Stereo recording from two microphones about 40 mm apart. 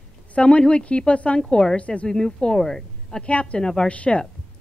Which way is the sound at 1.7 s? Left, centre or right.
Left.